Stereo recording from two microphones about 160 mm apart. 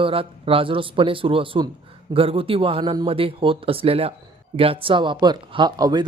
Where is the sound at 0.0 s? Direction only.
35° right (ahead or behind).